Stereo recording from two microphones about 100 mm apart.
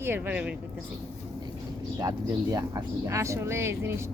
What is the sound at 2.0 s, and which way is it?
Speech, 40° right (ahead or behind).